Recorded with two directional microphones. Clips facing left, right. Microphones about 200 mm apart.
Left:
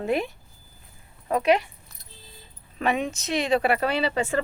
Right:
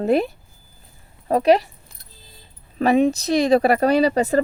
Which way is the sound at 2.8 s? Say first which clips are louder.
Right 9 dB; 35° right (ahead or behind).